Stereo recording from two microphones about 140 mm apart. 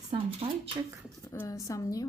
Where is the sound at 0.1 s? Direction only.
40° right (ahead or behind).